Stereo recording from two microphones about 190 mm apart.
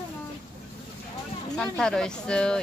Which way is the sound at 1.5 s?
5° left (ahead or behind).